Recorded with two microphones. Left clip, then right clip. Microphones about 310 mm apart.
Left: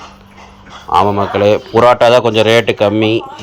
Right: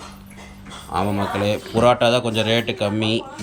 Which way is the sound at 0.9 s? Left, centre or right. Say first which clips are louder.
Left 12 dB; left.